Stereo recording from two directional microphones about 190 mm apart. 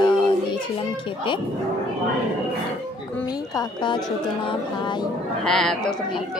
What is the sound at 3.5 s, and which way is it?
Speech, 25° left (ahead or behind).